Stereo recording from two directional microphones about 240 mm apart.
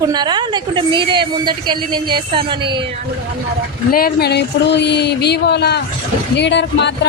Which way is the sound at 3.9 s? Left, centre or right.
Left.